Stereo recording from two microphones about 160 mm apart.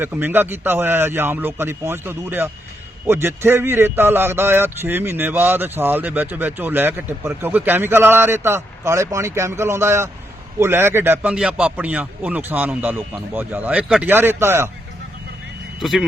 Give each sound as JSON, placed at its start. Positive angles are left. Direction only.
{"t": 0.0, "sound": "a man's voice", "side_deg": -10}
{"t": 15.8, "sound": "speech", "side_deg": 0}